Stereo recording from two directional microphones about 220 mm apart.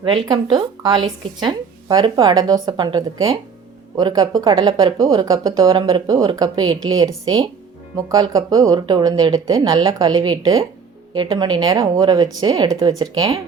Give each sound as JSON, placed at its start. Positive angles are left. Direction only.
{"t": 0.0, "sound": "a woman's voice", "side_deg": -20}